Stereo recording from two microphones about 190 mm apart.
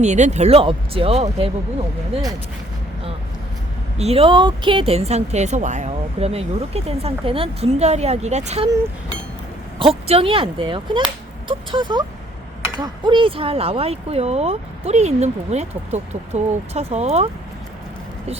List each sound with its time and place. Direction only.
0.0 s a woman's voice: 35° right (ahead or behind)
3.9 s a woman's voice: 35° right (ahead or behind)
9.7 s a woman's voice: 30° right (ahead or behind)